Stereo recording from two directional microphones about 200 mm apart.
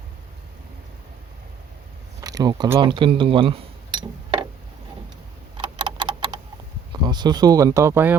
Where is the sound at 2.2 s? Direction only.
20° right (ahead or behind).